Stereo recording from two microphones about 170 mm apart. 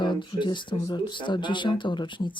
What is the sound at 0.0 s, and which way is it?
Speech, 25° left (ahead or behind).